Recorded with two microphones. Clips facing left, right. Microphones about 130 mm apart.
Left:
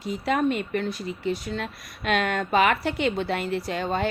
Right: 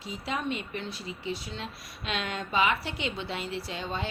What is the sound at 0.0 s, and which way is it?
A woman's voice, 55° left (ahead or behind).